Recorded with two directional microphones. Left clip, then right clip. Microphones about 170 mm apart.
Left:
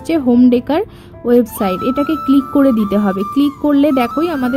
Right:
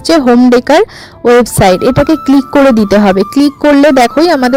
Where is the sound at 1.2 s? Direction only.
35° right (ahead or behind).